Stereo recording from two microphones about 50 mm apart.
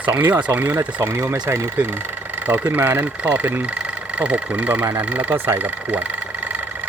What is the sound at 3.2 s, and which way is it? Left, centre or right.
Speech, right.